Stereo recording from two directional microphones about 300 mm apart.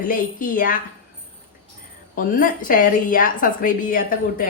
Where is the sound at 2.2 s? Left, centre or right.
Left.